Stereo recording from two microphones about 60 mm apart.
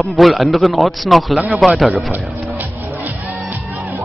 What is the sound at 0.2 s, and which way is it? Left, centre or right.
A man's voice, centre.